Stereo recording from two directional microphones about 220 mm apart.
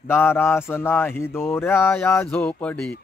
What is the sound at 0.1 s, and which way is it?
A man's voice, 10° left (ahead or behind).